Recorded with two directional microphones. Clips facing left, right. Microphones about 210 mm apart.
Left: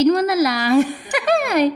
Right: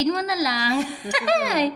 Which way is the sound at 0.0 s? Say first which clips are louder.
Left 7 dB; 55° left (ahead or behind).